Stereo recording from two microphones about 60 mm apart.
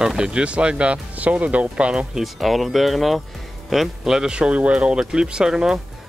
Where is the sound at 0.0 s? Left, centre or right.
Centre.